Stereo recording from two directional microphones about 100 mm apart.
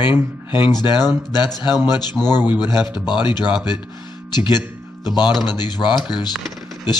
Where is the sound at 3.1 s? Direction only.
50° left (ahead or behind).